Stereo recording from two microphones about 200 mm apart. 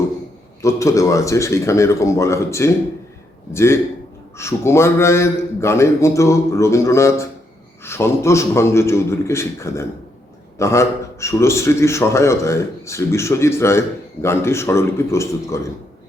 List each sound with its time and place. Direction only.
0.6 s a man's voice: 15° left (ahead or behind)